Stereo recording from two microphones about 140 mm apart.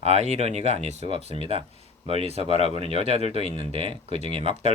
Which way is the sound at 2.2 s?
45° right (ahead or behind).